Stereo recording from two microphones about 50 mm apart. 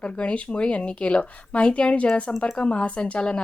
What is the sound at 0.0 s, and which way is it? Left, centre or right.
A woman's voice, left.